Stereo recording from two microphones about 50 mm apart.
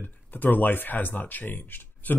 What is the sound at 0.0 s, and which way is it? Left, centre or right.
Speech, left.